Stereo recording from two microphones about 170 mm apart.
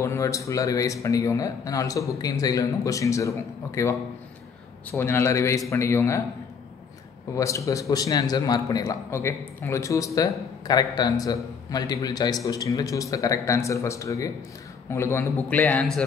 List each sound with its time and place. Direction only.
0.0 s a man's voice: 15° left (ahead or behind)
4.9 s a man's voice: 15° left (ahead or behind)
7.3 s a man's voice: 20° left (ahead or behind)